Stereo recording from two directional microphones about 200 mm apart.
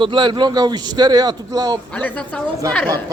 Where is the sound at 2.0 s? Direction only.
5° left (ahead or behind).